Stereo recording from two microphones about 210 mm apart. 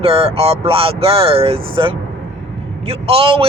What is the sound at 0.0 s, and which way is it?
Speech, 30° right (ahead or behind).